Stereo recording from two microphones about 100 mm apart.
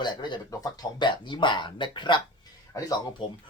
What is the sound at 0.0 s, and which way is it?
Speech, 45° left (ahead or behind).